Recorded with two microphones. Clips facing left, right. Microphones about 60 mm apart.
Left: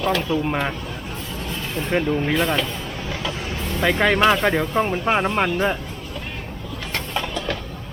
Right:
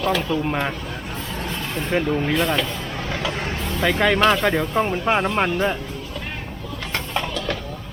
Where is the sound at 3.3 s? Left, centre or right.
Right.